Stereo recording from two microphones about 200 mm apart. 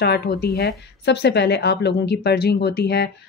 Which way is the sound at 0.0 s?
50° left (ahead or behind).